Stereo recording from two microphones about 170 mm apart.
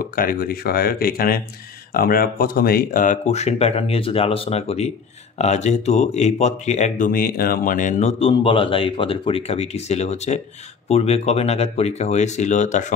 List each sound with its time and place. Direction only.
0.0 s speech: 55° left (ahead or behind)